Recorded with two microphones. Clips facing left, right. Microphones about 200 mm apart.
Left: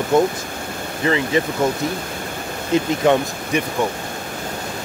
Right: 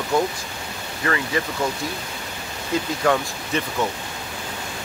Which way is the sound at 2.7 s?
20° left (ahead or behind).